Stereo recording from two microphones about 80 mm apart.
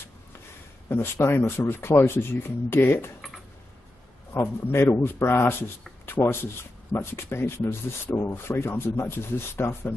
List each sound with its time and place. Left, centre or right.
0.8 s speech: left
4.3 s speech: left